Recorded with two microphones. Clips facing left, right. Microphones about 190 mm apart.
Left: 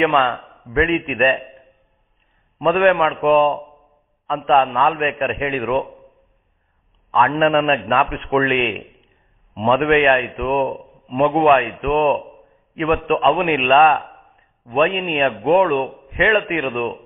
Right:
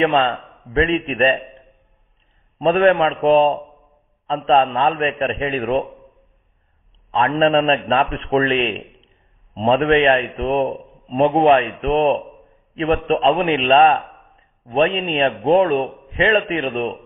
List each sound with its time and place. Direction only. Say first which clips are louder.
0.0 s a man's voice: even; 30° right (ahead or behind)
2.6 s a man's voice: right 1 dB; 30° right (ahead or behind)
4.5 s a man's voice: even; 30° right (ahead or behind)
7.1 s a man's voice: even; 30° right (ahead or behind)